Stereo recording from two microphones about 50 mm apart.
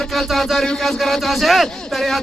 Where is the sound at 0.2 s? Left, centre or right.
Centre.